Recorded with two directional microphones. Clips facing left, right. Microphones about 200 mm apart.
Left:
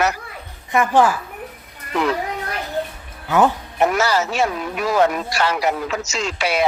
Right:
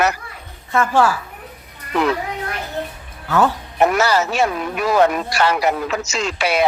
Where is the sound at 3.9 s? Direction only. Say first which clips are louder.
Right 1 dB; 60° right (ahead or behind).